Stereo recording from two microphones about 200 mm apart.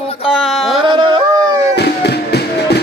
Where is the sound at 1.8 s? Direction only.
55° left (ahead or behind).